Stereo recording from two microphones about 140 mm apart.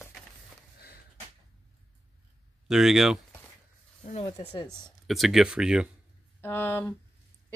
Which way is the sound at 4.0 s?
45° left (ahead or behind).